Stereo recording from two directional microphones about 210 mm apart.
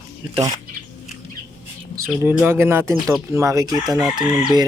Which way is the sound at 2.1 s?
10° right (ahead or behind).